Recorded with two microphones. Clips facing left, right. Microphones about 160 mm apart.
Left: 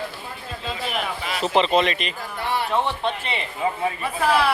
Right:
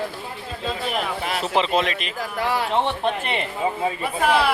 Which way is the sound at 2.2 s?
90° right.